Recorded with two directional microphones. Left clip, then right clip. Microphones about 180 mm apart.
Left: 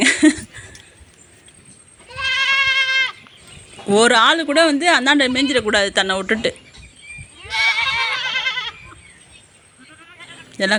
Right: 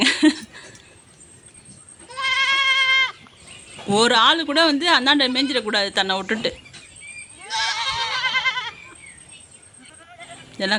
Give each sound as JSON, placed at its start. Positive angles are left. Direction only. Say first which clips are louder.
{"t": 0.0, "sound": "a sound", "louder": "left 3 dB", "side_deg": 15}
{"t": 2.1, "sound": "goat", "louder": "left 2 dB", "side_deg": 20}
{"t": 3.8, "sound": "speech", "louder": "left 3 dB", "side_deg": 15}
{"t": 8.1, "sound": "goat", "louder": "even", "side_deg": 15}
{"t": 10.5, "sound": "speech", "louder": "left 4 dB", "side_deg": 20}